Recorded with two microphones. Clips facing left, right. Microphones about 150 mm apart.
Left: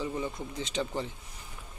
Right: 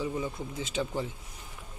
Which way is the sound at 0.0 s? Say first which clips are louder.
Right 1 dB; 5° right (ahead or behind).